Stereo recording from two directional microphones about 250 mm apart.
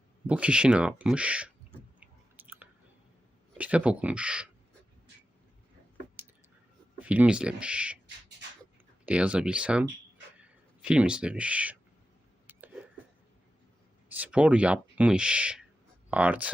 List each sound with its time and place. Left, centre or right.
0.3 s speech: centre
2.0 s chewing: centre
3.6 s speech: centre
6.2 s a sound: centre
7.0 s speech: centre
9.0 s speech: centre
12.5 s a sound: centre
14.1 s speech: centre